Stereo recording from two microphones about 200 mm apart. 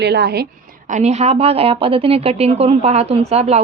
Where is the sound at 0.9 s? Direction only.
35° right (ahead or behind).